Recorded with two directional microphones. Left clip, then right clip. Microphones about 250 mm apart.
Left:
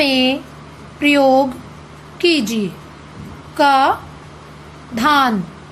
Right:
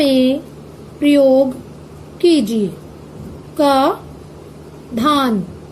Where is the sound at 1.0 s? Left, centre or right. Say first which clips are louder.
Right 1 dB; left.